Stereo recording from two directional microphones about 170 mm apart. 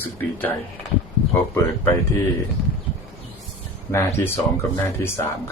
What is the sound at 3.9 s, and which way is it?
Speech, 15° left (ahead or behind).